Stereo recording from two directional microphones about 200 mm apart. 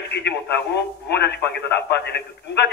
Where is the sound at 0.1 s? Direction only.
55° left (ahead or behind).